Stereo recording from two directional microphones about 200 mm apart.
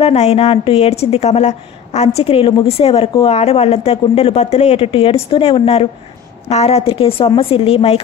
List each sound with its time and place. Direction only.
0.0 s a woman's voice: 30° left (ahead or behind)